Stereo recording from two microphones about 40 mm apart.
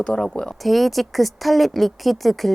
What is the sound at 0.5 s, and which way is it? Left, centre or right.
A woman's voice, centre.